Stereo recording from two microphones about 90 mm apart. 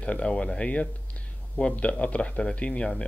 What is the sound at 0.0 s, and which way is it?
Speech, 10° left (ahead or behind).